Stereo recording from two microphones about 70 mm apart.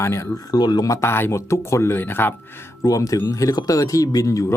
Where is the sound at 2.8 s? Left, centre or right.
Left.